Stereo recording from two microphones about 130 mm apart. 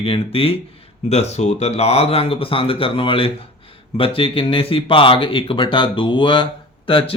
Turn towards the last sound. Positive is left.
turn(degrees=45)  # may be behind; listen again after turning